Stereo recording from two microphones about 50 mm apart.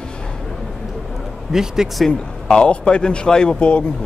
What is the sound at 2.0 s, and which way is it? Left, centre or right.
Speech, centre.